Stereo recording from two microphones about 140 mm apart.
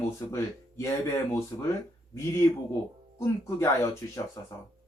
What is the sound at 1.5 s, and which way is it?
Speech, 25° left (ahead or behind).